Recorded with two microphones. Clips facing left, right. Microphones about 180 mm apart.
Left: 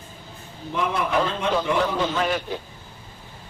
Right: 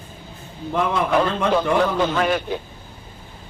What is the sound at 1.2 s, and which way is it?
Speech, 55° right (ahead or behind).